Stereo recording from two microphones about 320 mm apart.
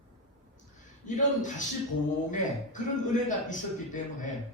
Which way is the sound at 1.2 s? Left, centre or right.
Left.